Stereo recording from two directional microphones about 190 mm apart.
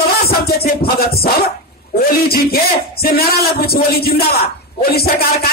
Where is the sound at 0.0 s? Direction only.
55° left (ahead or behind).